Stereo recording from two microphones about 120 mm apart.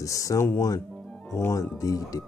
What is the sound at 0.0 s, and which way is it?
Speech, 25° left (ahead or behind).